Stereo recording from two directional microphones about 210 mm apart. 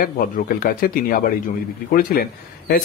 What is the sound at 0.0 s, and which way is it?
A man's voice, 45° left (ahead or behind).